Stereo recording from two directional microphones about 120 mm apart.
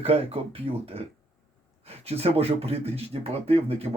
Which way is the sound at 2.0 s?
55° right (ahead or behind).